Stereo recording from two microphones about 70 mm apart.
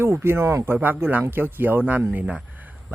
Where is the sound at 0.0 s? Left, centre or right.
Right.